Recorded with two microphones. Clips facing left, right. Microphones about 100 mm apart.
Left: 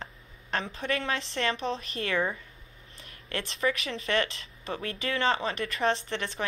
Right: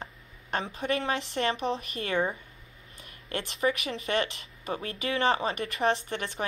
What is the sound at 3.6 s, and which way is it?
A woman's voice, 30° right (ahead or behind).